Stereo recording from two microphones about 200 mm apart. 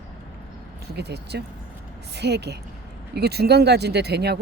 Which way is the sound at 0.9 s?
55° right (ahead or behind).